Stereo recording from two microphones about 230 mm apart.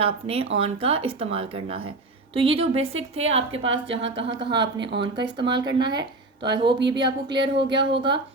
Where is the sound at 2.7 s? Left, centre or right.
Right.